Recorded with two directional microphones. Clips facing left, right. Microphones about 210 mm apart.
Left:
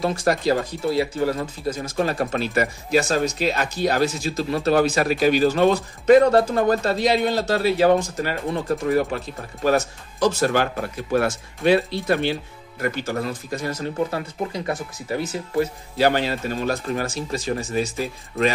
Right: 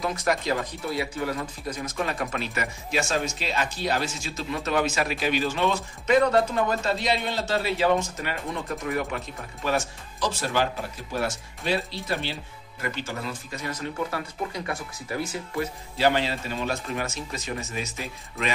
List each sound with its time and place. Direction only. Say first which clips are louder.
0.0 s speech: left 6 dB; 30° left (ahead or behind)
16.0 s speech: left 4 dB; 45° left (ahead or behind)